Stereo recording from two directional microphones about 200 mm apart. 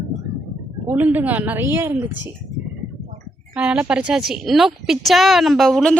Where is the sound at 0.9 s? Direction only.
10° right (ahead or behind).